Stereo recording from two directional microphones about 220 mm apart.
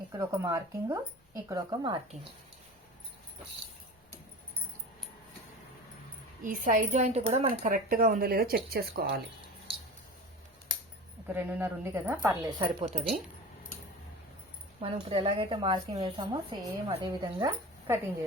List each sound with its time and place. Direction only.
0.1 s speech: 15° right (ahead or behind)
6.4 s speech: 35° right (ahead or behind)
11.3 s speech: 10° right (ahead or behind); by 13.1 s 30° right (ahead or behind)
15.1 s a woman's voice: 25° right (ahead or behind)